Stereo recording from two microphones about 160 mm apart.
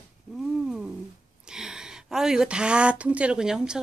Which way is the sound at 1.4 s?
5° right (ahead or behind).